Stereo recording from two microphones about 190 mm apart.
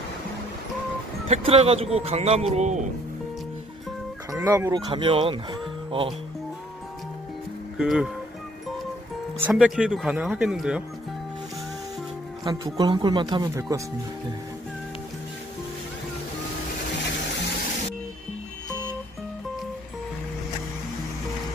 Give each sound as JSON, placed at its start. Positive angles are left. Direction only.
{"t": 1.3, "sound": "speech", "side_deg": -30}
{"t": 4.3, "sound": "speech", "side_deg": -15}
{"t": 7.7, "sound": "speech", "side_deg": 0}
{"t": 9.5, "sound": "speech", "side_deg": -5}
{"t": 12.4, "sound": "speech", "side_deg": -20}